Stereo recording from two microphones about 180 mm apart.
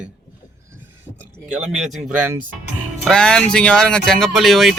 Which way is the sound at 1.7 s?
5° right (ahead or behind).